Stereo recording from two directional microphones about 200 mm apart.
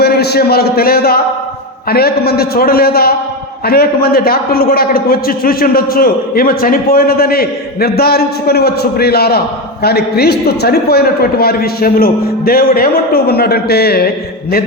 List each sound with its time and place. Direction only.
0.0 s a man's voice: 55° left (ahead or behind)